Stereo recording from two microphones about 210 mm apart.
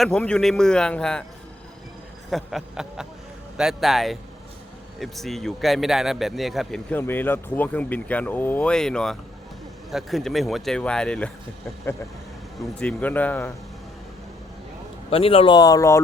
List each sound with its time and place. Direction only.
0.0 s speech: 5° left (ahead or behind)
2.3 s speech: centre (ahead or behind)
12.8 s speech: 5° left (ahead or behind)
15.1 s speech: 25° left (ahead or behind)